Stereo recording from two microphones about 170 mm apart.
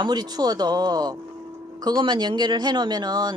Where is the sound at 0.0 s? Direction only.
25° right (ahead or behind).